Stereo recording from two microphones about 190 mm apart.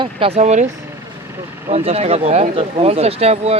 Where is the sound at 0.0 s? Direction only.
30° right (ahead or behind).